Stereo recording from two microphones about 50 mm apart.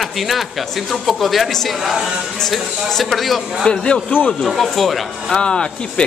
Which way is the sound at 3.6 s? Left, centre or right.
Centre.